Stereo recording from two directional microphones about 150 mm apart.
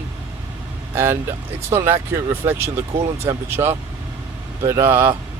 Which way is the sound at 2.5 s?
15° right (ahead or behind).